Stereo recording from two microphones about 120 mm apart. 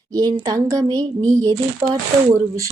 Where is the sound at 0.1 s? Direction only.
30° right (ahead or behind).